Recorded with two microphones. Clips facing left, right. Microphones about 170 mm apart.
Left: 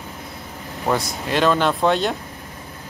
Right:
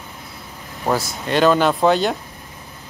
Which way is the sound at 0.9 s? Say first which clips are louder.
Right 1 dB; 5° right (ahead or behind).